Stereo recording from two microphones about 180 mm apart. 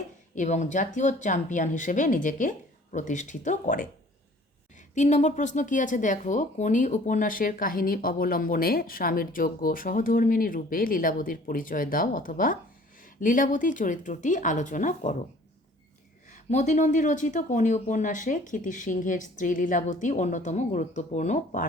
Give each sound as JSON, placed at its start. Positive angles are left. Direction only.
{"t": 0.3, "sound": "speech", "side_deg": 40}
{"t": 4.9, "sound": "speech", "side_deg": 40}
{"t": 16.3, "sound": "speech", "side_deg": 40}